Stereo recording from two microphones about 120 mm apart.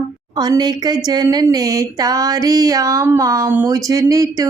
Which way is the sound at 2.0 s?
30° right (ahead or behind).